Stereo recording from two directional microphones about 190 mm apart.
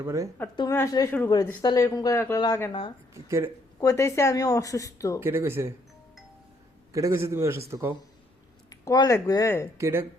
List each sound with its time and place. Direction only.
0.0 s a man's voice: 15° right (ahead or behind)
0.5 s a woman's voice: 20° left (ahead or behind)
3.2 s a man's voice: 15° right (ahead or behind)
3.8 s speech: 15° left (ahead or behind)
5.2 s a man's voice: 10° right (ahead or behind)
6.9 s a man's voice: 15° right (ahead or behind)
8.7 s speech: 20° left (ahead or behind)
9.7 s a man's voice: 15° right (ahead or behind)